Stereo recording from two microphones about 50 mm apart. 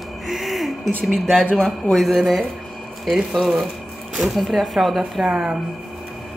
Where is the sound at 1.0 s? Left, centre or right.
Centre.